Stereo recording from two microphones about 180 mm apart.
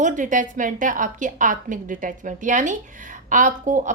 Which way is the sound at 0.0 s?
45° right (ahead or behind).